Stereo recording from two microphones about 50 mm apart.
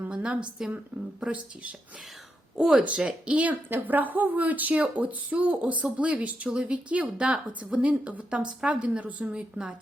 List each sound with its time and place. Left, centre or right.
0.1 s a woman's voice: centre
3.7 s a woman's voice: right